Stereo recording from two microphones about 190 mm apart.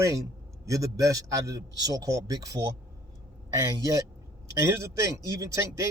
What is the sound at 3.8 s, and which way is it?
A man's voice, 20° right (ahead or behind).